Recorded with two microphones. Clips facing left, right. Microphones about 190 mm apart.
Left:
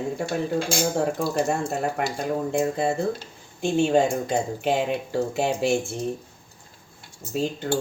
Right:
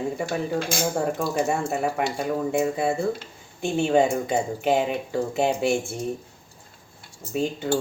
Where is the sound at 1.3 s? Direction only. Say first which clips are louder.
Even; 5° right (ahead or behind).